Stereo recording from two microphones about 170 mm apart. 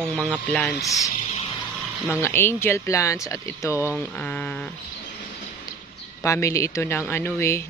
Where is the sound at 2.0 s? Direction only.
15° left (ahead or behind).